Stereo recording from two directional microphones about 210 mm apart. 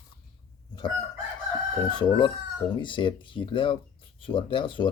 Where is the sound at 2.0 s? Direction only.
20° left (ahead or behind).